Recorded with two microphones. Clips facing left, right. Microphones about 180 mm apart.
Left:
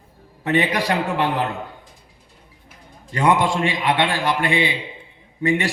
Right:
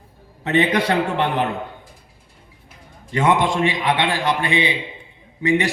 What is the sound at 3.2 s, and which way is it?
A man's voice, 20° right (ahead or behind).